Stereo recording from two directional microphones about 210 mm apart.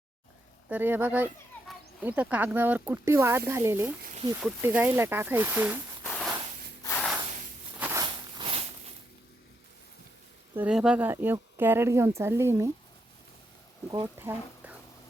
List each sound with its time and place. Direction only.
0.7 s speech: 10° right (ahead or behind)
6.0 s a sound: 5° left (ahead or behind)
7.8 s a sound: 10° right (ahead or behind)
8.0 s walk: 25° right (ahead or behind)
10.5 s speech: 5° right (ahead or behind)
13.9 s speech: 15° right (ahead or behind)